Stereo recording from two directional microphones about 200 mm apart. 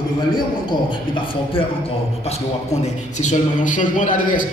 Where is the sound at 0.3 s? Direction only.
20° left (ahead or behind).